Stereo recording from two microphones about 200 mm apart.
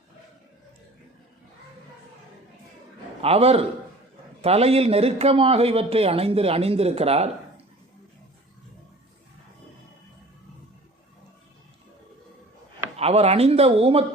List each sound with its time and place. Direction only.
3.2 s speech: 30° right (ahead or behind)
13.0 s speech: 30° right (ahead or behind)